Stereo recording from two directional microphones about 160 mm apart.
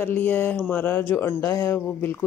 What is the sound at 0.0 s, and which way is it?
Speech, 10° left (ahead or behind).